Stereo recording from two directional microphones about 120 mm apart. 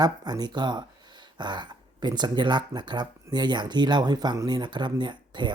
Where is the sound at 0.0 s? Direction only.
35° right (ahead or behind).